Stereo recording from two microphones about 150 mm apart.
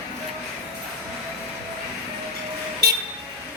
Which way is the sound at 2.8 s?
90° right.